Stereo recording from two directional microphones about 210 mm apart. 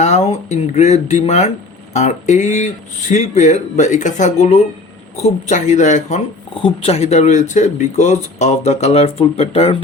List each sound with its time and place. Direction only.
0.0 s speech: 30° left (ahead or behind)